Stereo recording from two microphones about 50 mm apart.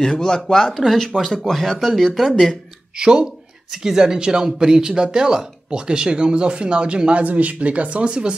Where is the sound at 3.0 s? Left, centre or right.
Centre.